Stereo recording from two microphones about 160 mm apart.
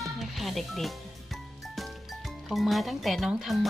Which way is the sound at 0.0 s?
Centre (ahead or behind).